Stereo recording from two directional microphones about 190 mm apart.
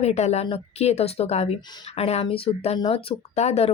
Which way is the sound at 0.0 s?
35° left (ahead or behind).